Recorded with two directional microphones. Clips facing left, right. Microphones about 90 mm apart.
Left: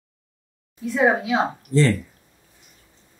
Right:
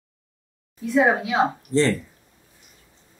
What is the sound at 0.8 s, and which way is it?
Speech, centre (ahead or behind).